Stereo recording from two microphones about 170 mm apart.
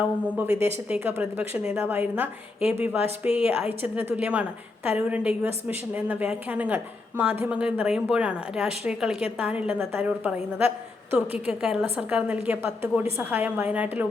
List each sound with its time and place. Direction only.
0.6 s a woman's voice: 10° right (ahead or behind)